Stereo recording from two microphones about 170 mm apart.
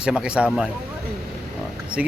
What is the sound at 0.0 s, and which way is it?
Speech, 5° right (ahead or behind).